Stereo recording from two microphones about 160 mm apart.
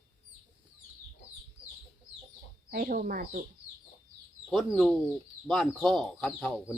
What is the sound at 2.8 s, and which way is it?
Speech, 60° right (ahead or behind).